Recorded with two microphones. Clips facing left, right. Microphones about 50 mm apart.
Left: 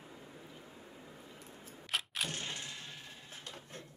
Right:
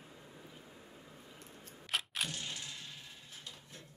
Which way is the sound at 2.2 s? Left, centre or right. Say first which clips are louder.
Left 2 dB; left.